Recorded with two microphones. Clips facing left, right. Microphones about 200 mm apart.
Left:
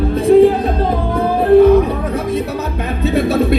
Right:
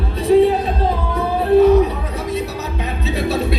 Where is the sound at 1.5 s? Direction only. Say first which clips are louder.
Left 4 dB; 55° left (ahead or behind).